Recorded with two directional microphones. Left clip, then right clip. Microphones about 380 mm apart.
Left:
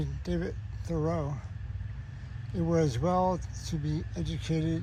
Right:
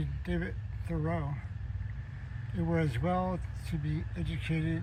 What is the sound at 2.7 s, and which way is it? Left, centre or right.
Speech, centre.